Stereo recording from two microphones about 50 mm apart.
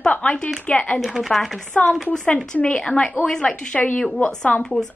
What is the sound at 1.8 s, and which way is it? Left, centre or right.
Speech, left.